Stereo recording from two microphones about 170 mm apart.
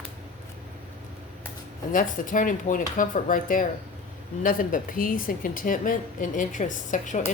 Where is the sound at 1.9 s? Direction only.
50° left (ahead or behind).